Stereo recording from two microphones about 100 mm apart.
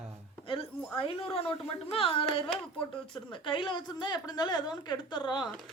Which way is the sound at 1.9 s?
65° left (ahead or behind).